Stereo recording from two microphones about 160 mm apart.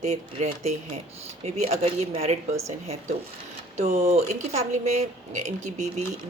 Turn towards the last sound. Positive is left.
turn(degrees=-45)  # may be behind; listen again after turning